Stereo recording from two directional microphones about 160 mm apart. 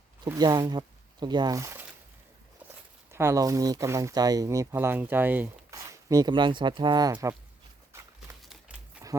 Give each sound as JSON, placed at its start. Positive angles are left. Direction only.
{"t": 0.3, "sound": "speech", "side_deg": -25}
{"t": 3.1, "sound": "speech", "side_deg": -15}